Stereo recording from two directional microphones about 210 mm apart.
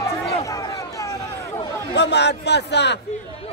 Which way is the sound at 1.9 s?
55° left (ahead or behind).